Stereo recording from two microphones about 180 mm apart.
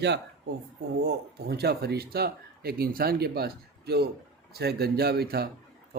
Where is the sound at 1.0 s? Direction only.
65° right (ahead or behind).